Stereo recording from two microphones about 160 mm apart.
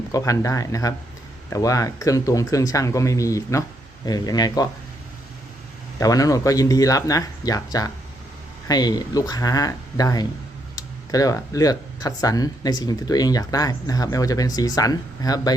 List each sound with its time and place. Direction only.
0.1 s speech: 20° left (ahead or behind)
6.0 s speech: 20° left (ahead or behind)